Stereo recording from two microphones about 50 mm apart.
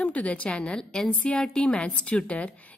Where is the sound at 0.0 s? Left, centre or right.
Left.